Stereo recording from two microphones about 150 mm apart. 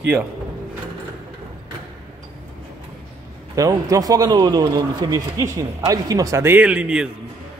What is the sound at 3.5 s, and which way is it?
A man's voice, 25° right (ahead or behind).